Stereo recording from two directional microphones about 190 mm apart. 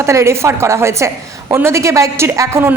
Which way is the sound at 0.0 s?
15° right (ahead or behind).